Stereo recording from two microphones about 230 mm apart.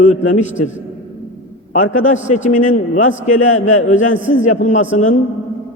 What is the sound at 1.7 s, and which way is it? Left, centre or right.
A man's voice, left.